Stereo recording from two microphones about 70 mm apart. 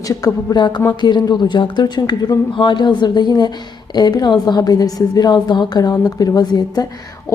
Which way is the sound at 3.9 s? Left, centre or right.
Left.